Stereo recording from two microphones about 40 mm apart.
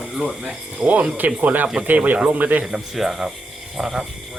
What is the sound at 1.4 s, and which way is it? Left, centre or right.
A man's voice, right.